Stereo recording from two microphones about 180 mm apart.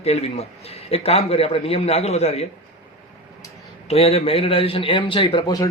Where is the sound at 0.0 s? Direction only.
35° left (ahead or behind).